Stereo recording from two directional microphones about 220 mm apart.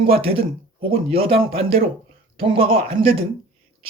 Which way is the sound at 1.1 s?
25° right (ahead or behind).